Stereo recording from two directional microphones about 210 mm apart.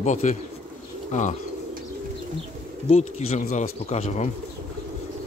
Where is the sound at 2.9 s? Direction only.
30° left (ahead or behind).